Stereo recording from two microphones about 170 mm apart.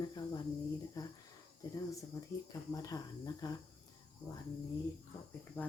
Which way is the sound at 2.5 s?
20° left (ahead or behind).